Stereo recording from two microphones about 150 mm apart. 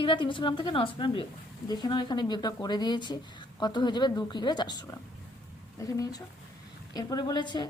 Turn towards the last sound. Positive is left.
turn(degrees=30)  # may be behind; listen again after turning